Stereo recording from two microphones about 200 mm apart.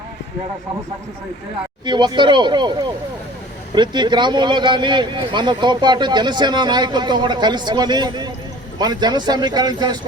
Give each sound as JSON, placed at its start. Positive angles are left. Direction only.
{"t": 1.8, "sound": "speech", "side_deg": -20}